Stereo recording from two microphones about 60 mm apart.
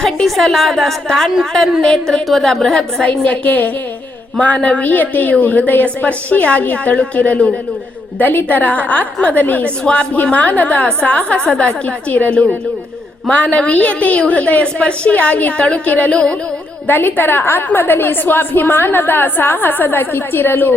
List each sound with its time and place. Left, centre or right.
0.0 s a woman's voice: centre
3.1 s a woman's voice: left
9.9 s a woman's voice: centre
10.3 s a woman's voice: left
16.8 s a woman's voice: left